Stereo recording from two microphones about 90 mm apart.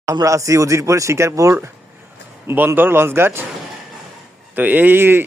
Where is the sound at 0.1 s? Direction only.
40° right (ahead or behind).